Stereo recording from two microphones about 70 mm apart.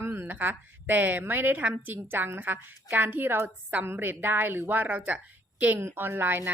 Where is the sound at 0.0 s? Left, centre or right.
Right.